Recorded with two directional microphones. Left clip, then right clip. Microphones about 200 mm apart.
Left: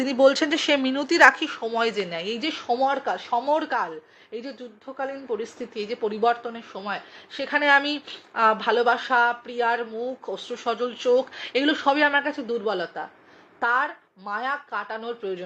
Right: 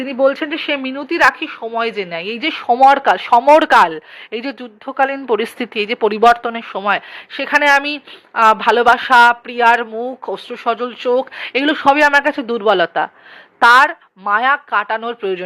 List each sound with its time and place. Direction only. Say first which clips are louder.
0.0 s speech: right 3 dB; centre (ahead or behind); by 7.4 s 40° right (ahead or behind)
7.4 s speech: right 7 dB; 25° right (ahead or behind)
12.5 s a man's voice: right 12 dB; 45° right (ahead or behind)
13.6 s speech: right 14 dB; 35° right (ahead or behind)